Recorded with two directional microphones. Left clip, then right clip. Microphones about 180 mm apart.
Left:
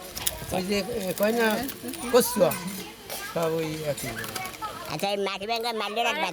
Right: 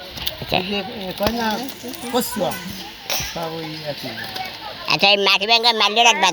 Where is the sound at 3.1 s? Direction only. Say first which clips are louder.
Right 14 dB; 10° right (ahead or behind).